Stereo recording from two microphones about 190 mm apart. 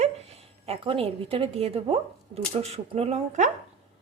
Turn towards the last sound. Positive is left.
turn(degrees=-35)  # may be behind; listen again after turning